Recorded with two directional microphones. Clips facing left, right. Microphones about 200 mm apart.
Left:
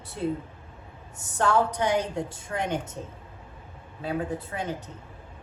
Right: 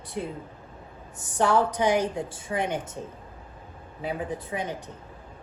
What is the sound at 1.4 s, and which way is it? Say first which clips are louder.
Speech: right 1 dB; 10° right (ahead or behind).